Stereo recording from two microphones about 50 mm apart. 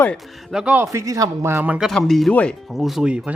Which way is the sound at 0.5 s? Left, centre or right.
Centre.